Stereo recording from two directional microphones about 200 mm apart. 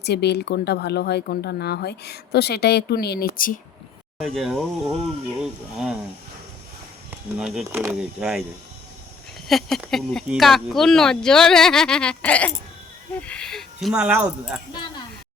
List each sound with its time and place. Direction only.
0.0 s speech: 55° left (ahead or behind)
4.2 s speech: centre (ahead or behind)
7.3 s speech: 5° right (ahead or behind)
9.5 s speech: centre (ahead or behind)
14.7 s speech: 20° left (ahead or behind)